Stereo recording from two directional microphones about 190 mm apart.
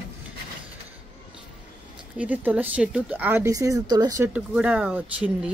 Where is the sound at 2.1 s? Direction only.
10° right (ahead or behind).